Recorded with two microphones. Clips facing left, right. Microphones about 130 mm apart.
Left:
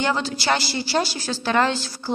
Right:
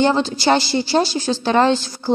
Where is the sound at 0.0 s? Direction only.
25° right (ahead or behind).